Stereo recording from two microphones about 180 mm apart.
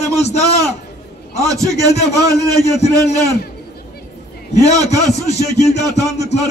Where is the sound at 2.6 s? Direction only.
40° left (ahead or behind).